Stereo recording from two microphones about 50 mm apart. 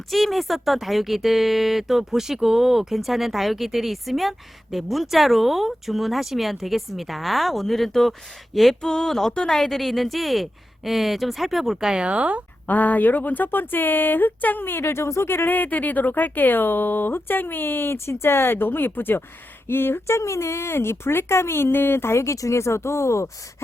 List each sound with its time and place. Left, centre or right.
0.1 s speech: centre
8.8 s a sound: centre
9.3 s speech: centre
12.0 s speech: right
12.6 s speech: left
15.4 s speech: left
17.9 s speech: left